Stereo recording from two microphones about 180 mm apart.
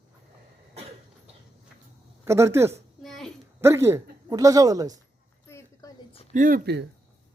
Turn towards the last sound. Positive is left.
turn(degrees=-50)  # may be behind; listen again after turning